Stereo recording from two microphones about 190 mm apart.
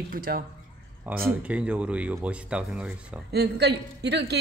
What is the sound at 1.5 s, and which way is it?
Speech, 5° right (ahead or behind).